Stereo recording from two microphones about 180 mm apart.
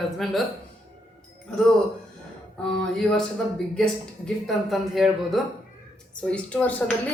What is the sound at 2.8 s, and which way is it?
Speech, 5° left (ahead or behind).